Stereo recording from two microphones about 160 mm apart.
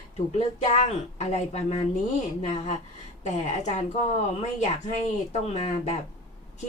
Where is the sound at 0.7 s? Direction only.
45° left (ahead or behind).